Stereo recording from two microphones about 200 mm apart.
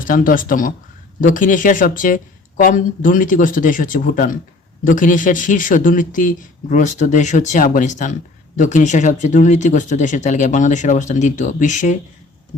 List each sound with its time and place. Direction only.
0.0 s speech: 45° left (ahead or behind)